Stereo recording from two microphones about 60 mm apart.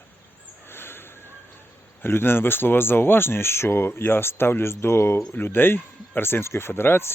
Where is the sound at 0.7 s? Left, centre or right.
Left.